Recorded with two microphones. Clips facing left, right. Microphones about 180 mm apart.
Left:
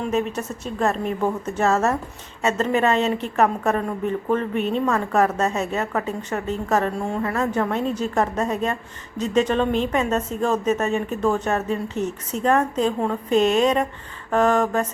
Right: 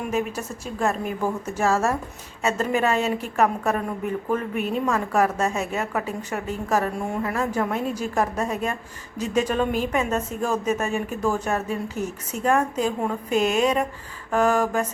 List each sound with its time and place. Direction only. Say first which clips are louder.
0.0 s a woman's voice: left 3 dB; 10° right (ahead or behind)